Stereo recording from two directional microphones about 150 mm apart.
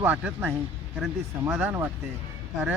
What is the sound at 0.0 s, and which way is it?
Speech, 10° right (ahead or behind).